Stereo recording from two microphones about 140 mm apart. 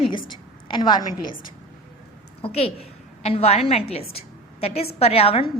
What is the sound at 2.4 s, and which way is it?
A woman's voice, 45° left (ahead or behind).